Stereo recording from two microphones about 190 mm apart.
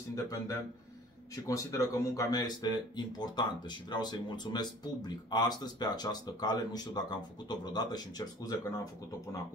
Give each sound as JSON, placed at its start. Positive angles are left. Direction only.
{"t": 0.1, "sound": "speech", "side_deg": 15}